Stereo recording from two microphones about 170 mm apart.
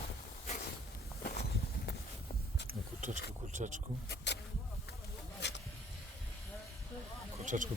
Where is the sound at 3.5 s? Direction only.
45° right (ahead or behind).